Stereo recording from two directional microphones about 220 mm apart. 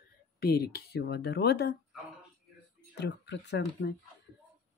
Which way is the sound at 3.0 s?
50° left (ahead or behind).